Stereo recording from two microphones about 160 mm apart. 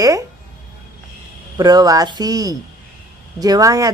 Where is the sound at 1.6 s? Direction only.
25° right (ahead or behind).